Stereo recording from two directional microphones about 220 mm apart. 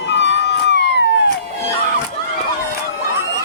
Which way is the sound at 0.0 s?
55° left (ahead or behind).